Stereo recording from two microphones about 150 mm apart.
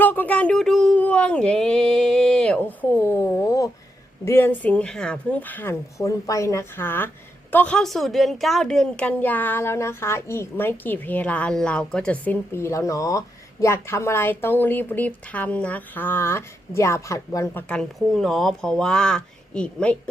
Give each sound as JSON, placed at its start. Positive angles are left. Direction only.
{"t": 0.0, "sound": "a woman's voice", "side_deg": 10}